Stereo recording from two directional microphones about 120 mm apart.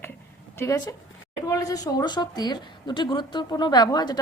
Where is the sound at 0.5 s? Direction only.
25° left (ahead or behind).